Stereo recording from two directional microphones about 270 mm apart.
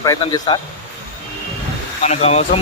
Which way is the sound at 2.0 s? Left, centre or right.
Left.